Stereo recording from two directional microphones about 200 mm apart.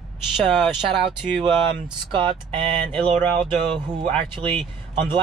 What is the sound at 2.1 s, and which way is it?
Speech, 25° right (ahead or behind).